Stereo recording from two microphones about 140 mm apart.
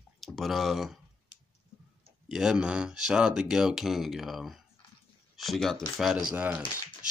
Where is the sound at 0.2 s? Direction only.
Centre (ahead or behind).